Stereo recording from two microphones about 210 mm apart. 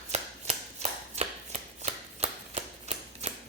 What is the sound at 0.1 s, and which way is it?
Chopping, 30° right (ahead or behind).